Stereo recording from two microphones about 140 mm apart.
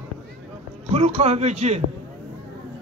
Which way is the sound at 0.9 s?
50° right (ahead or behind).